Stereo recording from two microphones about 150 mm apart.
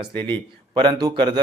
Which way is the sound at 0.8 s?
30° right (ahead or behind).